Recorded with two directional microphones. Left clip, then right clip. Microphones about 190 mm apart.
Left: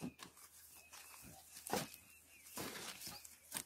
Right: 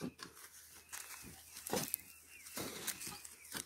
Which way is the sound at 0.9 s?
60° right (ahead or behind).